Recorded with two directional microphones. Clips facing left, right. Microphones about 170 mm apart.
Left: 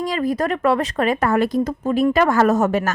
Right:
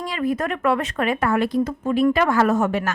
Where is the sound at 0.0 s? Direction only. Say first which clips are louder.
Left 3 dB; 40° left (ahead or behind).